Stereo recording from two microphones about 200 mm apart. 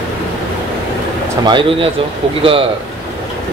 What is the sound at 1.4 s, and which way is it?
Speech, 25° right (ahead or behind).